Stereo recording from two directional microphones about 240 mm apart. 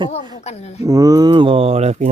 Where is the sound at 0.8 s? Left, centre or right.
Centre.